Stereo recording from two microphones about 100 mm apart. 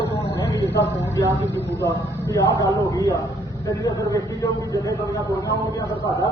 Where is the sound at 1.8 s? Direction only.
30° left (ahead or behind).